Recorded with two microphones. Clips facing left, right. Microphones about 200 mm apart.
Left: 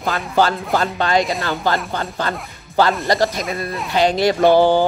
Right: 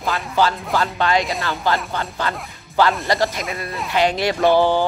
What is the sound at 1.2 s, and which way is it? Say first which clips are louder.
Speech: left 3 dB; centre (ahead or behind).